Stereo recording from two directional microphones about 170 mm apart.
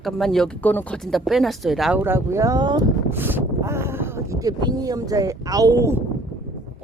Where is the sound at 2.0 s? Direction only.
15° right (ahead or behind).